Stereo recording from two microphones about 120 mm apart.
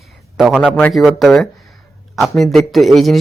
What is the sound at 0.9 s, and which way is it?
A man's voice, centre (ahead or behind).